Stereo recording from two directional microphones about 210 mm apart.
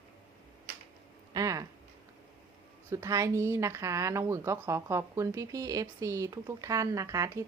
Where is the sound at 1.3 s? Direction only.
15° right (ahead or behind).